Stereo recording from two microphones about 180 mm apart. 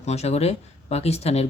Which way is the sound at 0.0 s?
35° left (ahead or behind).